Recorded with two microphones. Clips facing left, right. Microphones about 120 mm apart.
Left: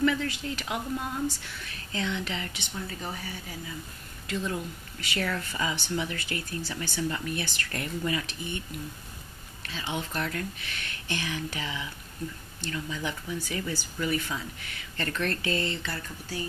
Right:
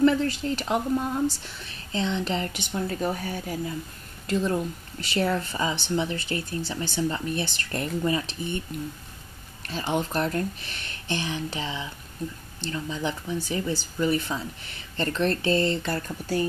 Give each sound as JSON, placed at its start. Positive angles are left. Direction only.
{"t": 0.0, "sound": "speech", "side_deg": -35}
{"t": 9.7, "sound": "speech", "side_deg": -40}